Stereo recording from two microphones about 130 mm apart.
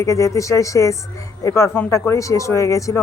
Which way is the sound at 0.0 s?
25° left (ahead or behind).